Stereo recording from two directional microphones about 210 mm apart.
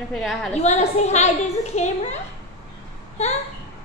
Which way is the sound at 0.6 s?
30° left (ahead or behind).